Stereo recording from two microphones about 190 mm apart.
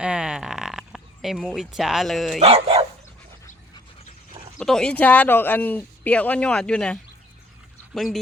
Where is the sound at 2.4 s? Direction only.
30° right (ahead or behind).